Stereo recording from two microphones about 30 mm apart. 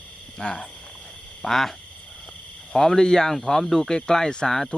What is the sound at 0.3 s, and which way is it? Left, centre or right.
Speech, left.